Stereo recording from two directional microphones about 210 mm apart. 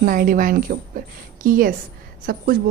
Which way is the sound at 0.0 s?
40° right (ahead or behind).